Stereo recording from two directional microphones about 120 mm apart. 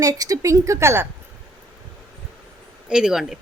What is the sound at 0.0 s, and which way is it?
A woman's voice, 30° right (ahead or behind).